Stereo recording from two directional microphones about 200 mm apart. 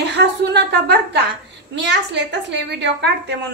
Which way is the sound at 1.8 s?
60° right (ahead or behind).